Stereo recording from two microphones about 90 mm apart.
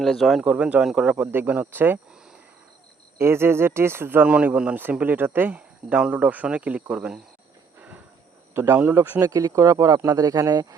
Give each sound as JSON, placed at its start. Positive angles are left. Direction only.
{"t": 0.0, "sound": "speech", "side_deg": 0}
{"t": 0.4, "sound": "speech", "side_deg": -15}
{"t": 1.1, "sound": "speech", "side_deg": -20}
{"t": 3.2, "sound": "speech", "side_deg": -30}
{"t": 4.3, "sound": "speech", "side_deg": -15}
{"t": 7.8, "sound": "wild animals", "side_deg": -15}
{"t": 8.5, "sound": "speech", "side_deg": -25}
{"t": 9.3, "sound": "speech", "side_deg": -40}